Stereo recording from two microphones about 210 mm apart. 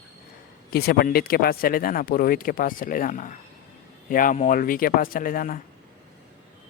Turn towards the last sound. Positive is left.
turn(degrees=40)  # may be behind; listen again after turning